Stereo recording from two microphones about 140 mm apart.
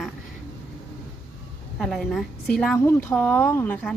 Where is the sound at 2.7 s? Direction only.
20° left (ahead or behind).